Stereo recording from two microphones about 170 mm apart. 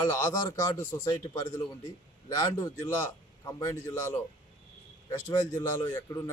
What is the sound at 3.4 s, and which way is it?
Speech, 20° left (ahead or behind).